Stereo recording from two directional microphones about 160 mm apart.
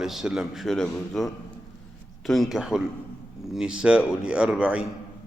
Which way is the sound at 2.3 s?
Centre (ahead or behind).